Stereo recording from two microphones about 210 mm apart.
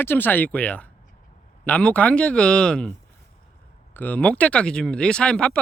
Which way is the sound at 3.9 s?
10° left (ahead or behind).